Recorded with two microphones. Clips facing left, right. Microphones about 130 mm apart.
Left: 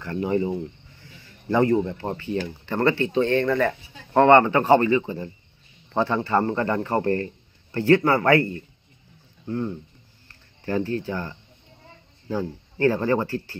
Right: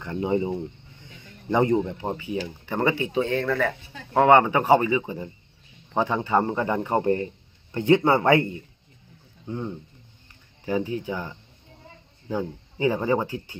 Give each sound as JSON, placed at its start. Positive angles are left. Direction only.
{"t": 0.0, "sound": "a man's voice", "side_deg": -20}